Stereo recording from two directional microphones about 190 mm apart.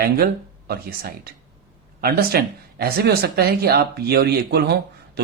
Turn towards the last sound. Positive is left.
turn(degrees=-60)  # may be behind; listen again after turning